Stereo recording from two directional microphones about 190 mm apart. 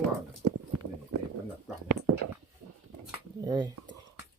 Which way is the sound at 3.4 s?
20° right (ahead or behind).